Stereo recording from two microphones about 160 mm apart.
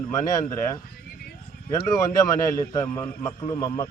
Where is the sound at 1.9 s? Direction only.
25° left (ahead or behind).